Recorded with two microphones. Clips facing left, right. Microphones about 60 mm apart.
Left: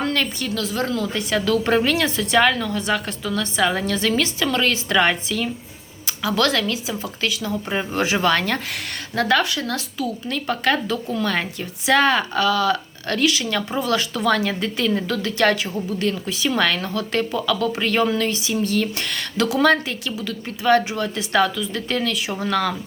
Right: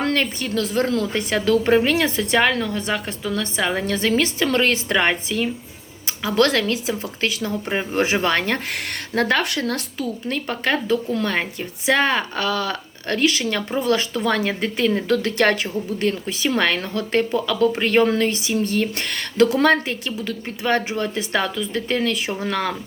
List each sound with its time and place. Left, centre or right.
0.1 s a woman's voice: right
0.6 s a woman's voice: right
1.6 s a woman's voice: right
3.9 s a woman's voice: right
8.7 s speech: right
9.6 s a woman's voice: right